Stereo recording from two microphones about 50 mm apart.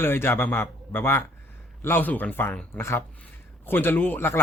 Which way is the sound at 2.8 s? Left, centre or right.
Left.